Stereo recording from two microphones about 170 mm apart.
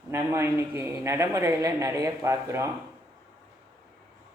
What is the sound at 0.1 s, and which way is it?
Speech, 15° right (ahead or behind).